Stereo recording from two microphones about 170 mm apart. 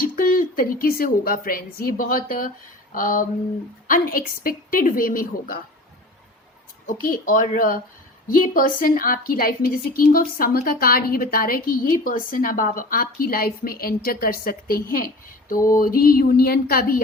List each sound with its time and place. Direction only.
0.0 s a woman's voice: 55° left (ahead or behind)
6.8 s a woman's voice: 50° left (ahead or behind)